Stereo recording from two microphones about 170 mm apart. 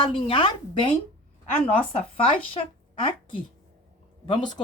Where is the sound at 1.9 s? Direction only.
30° left (ahead or behind).